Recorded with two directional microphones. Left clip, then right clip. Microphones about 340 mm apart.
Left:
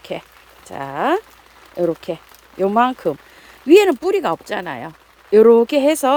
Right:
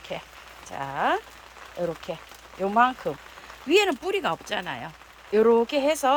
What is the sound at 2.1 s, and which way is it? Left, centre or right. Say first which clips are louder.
Speech: left 8 dB; left.